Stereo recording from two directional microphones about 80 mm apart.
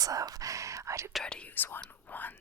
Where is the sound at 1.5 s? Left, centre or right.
Left.